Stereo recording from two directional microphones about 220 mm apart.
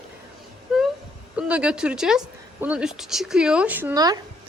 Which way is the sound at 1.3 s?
5° right (ahead or behind).